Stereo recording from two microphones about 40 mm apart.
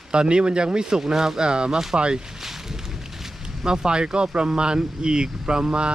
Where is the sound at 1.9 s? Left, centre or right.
Right.